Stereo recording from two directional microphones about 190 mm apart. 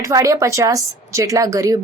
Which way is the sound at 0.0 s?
15° right (ahead or behind).